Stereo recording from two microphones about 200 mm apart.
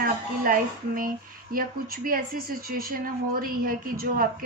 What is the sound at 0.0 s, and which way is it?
A woman's voice, 45° right (ahead or behind).